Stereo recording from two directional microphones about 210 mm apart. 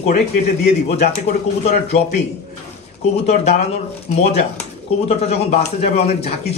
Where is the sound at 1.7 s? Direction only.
30° left (ahead or behind).